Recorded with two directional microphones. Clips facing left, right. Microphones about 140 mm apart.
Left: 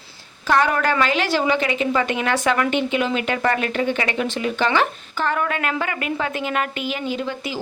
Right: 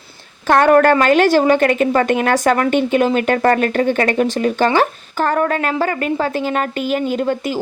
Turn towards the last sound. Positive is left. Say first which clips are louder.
# right 7 dB
turn(degrees=-50)  # may be behind; listen again after turning